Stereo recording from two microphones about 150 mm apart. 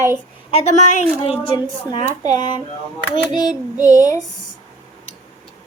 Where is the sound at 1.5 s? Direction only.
30° left (ahead or behind).